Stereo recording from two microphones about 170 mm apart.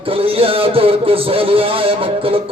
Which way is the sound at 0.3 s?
35° right (ahead or behind).